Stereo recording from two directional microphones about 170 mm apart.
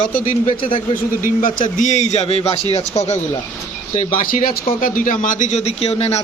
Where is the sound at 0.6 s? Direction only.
30° left (ahead or behind).